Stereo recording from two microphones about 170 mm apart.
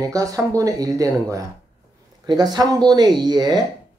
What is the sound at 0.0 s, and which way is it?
Speech, 20° right (ahead or behind).